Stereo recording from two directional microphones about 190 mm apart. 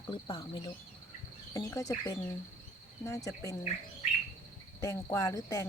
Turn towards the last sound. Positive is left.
turn(degrees=15)  # may be behind; listen again after turning